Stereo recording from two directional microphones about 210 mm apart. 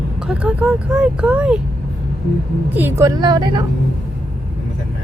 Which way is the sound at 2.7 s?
10° right (ahead or behind).